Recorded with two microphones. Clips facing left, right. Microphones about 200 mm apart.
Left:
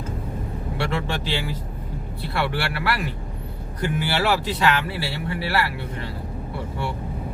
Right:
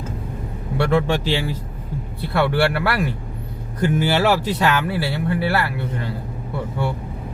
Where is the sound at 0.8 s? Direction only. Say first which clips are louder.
Right 8 dB; 50° right (ahead or behind).